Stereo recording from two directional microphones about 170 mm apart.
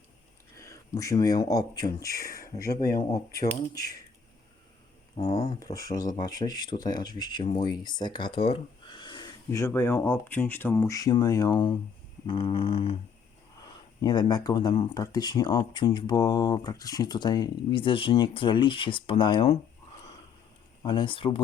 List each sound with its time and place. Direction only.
0.5 s speech: 20° left (ahead or behind)
2.6 s speech: 65° left (ahead or behind)
3.0 s speech: 20° left (ahead or behind)
5.1 s a sound: 35° left (ahead or behind)
5.5 s speech: 20° left (ahead or behind)
12.2 s a sound: 30° left (ahead or behind)
13.6 s speech: 25° left (ahead or behind)
20.8 s speech: 30° left (ahead or behind)